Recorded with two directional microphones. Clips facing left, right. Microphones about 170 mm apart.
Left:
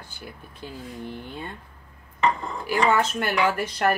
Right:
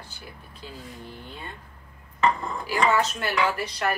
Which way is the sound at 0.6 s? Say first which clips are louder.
Left 4 dB; 50° left (ahead or behind).